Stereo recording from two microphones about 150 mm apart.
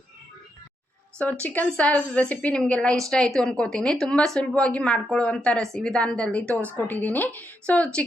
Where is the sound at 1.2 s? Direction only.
10° left (ahead or behind).